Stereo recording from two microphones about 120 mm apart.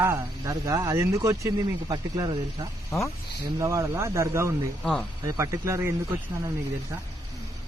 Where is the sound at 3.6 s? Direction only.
25° right (ahead or behind).